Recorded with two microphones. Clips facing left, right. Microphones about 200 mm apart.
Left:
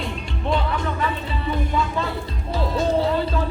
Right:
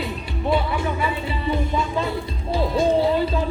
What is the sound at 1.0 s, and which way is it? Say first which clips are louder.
Music: right 1 dB; 15° right (ahead or behind).